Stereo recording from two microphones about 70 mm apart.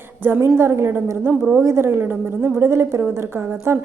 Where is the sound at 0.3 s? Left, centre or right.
Right.